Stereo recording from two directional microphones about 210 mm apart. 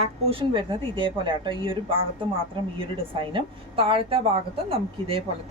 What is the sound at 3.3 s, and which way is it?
A woman's voice, 25° right (ahead or behind).